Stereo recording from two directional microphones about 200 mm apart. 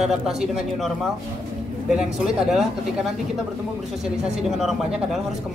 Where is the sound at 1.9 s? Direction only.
5° right (ahead or behind).